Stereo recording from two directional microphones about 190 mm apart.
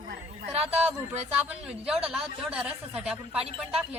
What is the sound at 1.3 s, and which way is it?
Speech, 10° right (ahead or behind).